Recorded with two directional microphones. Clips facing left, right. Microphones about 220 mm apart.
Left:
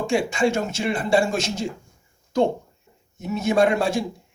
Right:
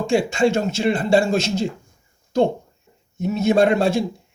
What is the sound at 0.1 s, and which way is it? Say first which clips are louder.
Speech: right 4 dB; 25° right (ahead or behind).